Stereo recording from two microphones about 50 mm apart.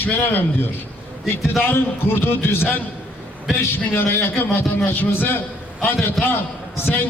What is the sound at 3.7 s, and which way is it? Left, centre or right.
Speech, left.